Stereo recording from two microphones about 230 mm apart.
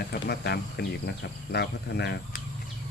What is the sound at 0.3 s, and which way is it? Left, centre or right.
Speech, left.